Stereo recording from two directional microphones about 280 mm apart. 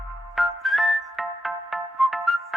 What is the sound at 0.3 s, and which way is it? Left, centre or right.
Whistle, centre.